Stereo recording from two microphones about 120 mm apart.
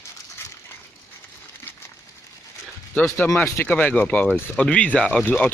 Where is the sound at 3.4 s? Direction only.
20° left (ahead or behind).